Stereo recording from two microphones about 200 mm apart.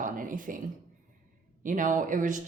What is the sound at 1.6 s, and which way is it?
Speech, 40° right (ahead or behind).